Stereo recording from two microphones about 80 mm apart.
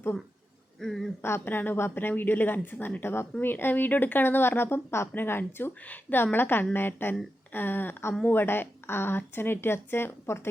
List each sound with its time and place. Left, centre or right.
0.8 s speech: centre
1.2 s speech: left